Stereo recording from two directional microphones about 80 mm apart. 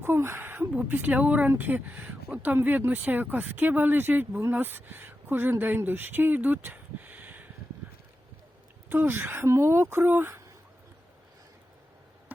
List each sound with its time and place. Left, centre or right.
0.0 s speech: right
8.9 s speech: right